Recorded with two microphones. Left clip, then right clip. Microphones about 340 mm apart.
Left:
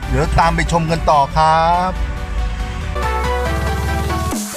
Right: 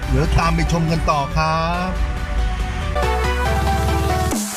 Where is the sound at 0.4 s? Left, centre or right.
Left.